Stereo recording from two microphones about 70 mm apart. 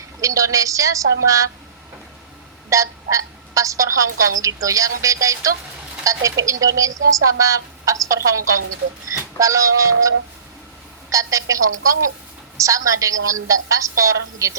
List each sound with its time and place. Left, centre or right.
0.2 s speech: right
2.6 s a woman's voice: right
11.1 s speech: right